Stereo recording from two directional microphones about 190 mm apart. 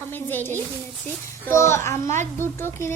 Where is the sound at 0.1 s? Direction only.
10° left (ahead or behind).